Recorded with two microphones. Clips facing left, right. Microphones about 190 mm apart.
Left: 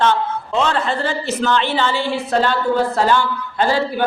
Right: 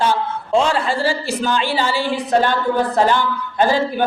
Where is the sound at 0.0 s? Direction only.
10° right (ahead or behind).